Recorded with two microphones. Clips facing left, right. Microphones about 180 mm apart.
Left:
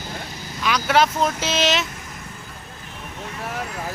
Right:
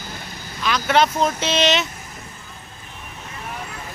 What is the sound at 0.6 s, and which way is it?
Speech, 5° left (ahead or behind).